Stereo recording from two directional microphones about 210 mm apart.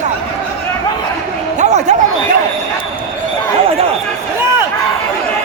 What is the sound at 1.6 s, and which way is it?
Speech, 35° right (ahead or behind).